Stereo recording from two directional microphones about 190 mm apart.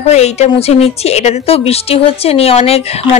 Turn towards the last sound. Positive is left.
turn(degrees=35)  # may be behind; listen again after turning